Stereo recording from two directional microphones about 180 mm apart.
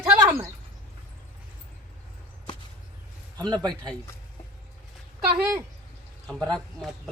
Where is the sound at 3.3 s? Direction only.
20° right (ahead or behind).